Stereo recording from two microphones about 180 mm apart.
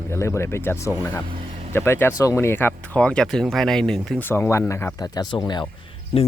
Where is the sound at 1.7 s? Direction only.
15° left (ahead or behind); by 6.2 s 30° left (ahead or behind).